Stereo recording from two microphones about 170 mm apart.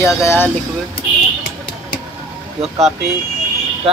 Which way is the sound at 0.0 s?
15° left (ahead or behind).